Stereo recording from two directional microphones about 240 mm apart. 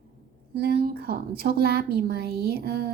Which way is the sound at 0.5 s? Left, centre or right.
Right.